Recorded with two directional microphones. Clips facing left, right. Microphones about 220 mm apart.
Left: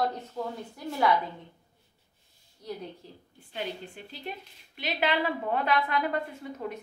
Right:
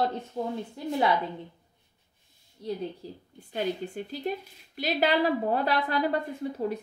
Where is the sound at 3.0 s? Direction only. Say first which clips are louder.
Right 7 dB; 35° right (ahead or behind).